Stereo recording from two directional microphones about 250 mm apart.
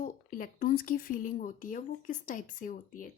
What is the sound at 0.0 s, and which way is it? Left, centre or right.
Speech, left.